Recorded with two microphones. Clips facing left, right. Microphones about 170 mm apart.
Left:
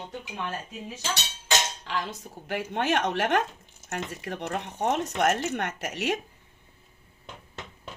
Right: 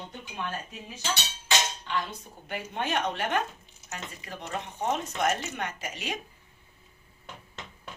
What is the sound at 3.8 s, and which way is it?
Speech, 65° left (ahead or behind).